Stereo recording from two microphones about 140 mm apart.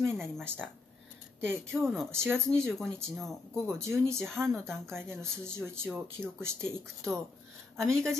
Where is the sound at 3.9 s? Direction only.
20° right (ahead or behind).